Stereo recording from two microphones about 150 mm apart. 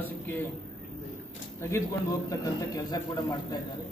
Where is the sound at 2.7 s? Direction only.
25° left (ahead or behind).